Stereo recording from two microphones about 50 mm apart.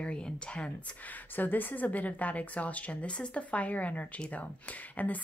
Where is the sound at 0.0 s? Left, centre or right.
Left.